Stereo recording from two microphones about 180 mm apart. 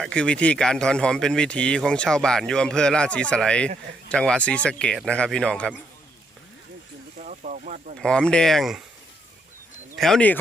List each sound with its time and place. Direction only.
0.0 s speech: 5° left (ahead or behind)
7.2 s a sound: 45° right (ahead or behind)
7.9 s speech: 5° left (ahead or behind)
10.0 s speech: 5° left (ahead or behind)